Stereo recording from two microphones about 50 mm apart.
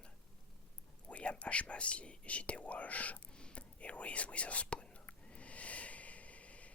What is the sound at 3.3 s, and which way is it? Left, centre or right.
Whispering, centre.